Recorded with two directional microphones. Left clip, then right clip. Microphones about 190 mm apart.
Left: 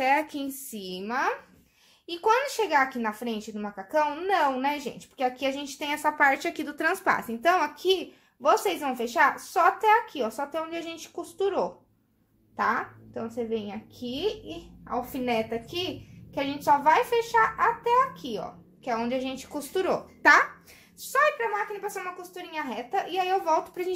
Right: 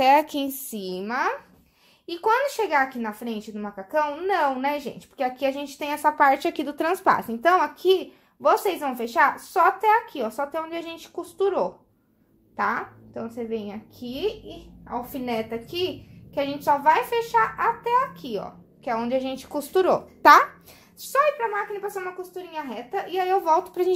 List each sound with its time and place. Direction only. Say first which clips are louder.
0.0 s a child's voice: right 6 dB; 30° right (ahead or behind)
2.0 s a child's voice: right 2 dB; 15° right (ahead or behind)
14.9 s a child's voice: left 1 dB; 25° right (ahead or behind)